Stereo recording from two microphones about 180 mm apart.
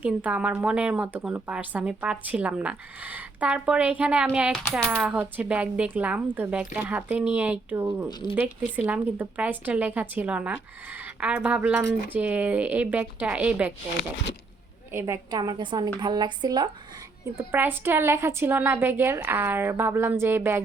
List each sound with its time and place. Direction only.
0.0 s a woman's voice: 10° right (ahead or behind)
14.9 s a woman's voice: 15° right (ahead or behind)
17.3 s a woman's voice: 10° right (ahead or behind)